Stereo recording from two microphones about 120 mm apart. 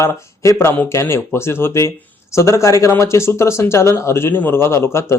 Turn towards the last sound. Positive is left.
turn(degrees=20)  # may be behind; listen again after turning